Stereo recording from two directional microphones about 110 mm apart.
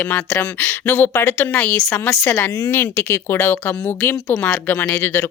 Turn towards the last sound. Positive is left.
turn(degrees=20)  # may be behind; listen again after turning